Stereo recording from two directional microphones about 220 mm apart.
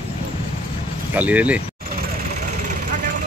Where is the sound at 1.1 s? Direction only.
5° right (ahead or behind).